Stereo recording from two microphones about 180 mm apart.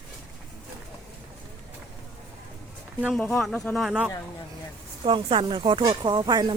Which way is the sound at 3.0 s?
Centre (ahead or behind).